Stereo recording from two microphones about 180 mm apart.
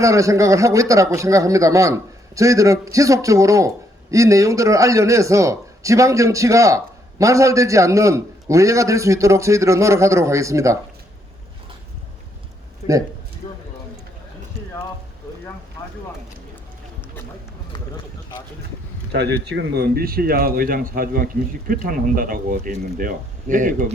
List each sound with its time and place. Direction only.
0.0 s a man's voice: 15° right (ahead or behind)
12.8 s a sound: 40° left (ahead or behind)
19.1 s speech: 80° right; by 23.8 s 45° right (ahead or behind)